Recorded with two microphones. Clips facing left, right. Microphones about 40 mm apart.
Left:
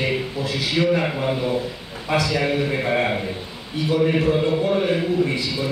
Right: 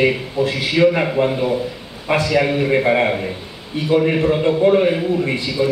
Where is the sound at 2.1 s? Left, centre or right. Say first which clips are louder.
Right 5 dB; right.